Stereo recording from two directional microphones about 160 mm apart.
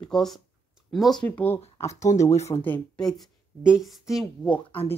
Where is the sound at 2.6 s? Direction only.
5° left (ahead or behind).